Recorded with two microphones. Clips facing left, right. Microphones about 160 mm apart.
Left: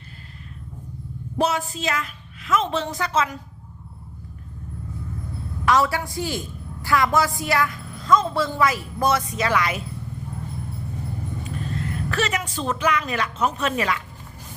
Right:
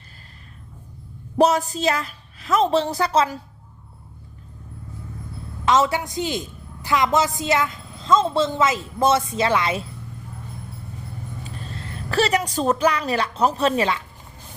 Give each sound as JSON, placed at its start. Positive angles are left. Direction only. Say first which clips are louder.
{"t": 1.4, "sound": "a woman's voice", "louder": "right 5 dB", "side_deg": -40}
{"t": 5.6, "sound": "a woman's voice", "louder": "right 1 dB", "side_deg": -20}
{"t": 11.4, "sound": "speech", "louder": "left 6 dB", "side_deg": -30}